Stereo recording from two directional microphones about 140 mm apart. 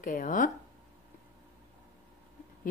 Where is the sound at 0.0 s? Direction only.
70° left (ahead or behind).